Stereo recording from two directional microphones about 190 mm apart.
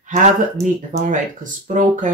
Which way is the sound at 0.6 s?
40° right (ahead or behind).